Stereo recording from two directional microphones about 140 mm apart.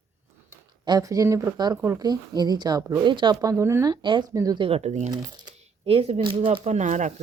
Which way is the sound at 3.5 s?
20° right (ahead or behind).